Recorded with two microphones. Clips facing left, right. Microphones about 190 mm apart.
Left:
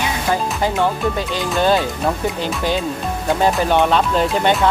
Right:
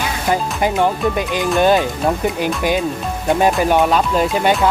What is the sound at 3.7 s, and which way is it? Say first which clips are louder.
Speech: right 1 dB; 10° right (ahead or behind).